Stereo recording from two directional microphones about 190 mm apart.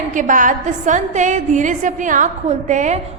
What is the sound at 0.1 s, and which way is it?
A woman's voice, 45° right (ahead or behind).